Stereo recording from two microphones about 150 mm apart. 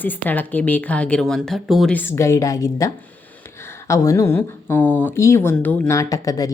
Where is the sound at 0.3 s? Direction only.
10° left (ahead or behind).